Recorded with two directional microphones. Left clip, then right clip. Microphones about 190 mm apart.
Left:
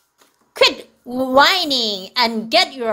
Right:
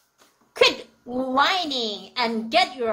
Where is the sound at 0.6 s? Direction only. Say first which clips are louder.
Left 4 dB; 45° left (ahead or behind).